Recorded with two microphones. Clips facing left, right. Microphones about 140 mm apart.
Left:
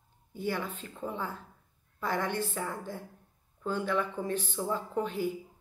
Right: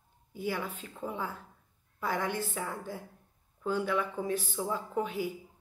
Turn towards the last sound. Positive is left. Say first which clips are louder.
# left 1 dB
turn(degrees=-10)  # may be behind; listen again after turning